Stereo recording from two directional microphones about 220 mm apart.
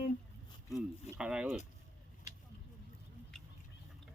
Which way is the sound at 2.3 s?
35° left (ahead or behind).